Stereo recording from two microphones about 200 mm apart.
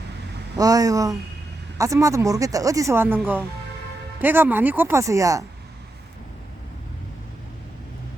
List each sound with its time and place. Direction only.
0.5 s speech: 20° right (ahead or behind)